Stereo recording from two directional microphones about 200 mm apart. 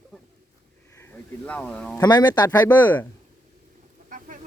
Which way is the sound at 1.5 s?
5° left (ahead or behind).